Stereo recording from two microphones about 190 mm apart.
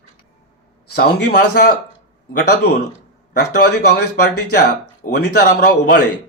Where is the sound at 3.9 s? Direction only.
55° left (ahead or behind).